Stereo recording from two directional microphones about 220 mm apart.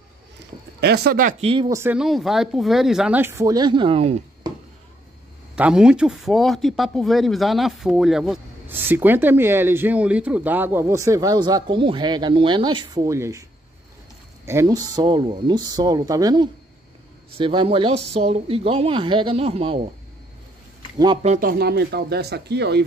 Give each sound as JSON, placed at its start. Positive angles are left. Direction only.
{"t": 0.7, "sound": "a man's voice", "side_deg": -50}
{"t": 1.5, "sound": "speech", "side_deg": -20}
{"t": 5.6, "sound": "speech", "side_deg": -5}
{"t": 14.4, "sound": "a woman's voice", "side_deg": -10}
{"t": 21.0, "sound": "a man's voice", "side_deg": -25}